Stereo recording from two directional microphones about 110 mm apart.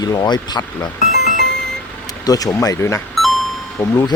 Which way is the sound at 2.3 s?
35° left (ahead or behind).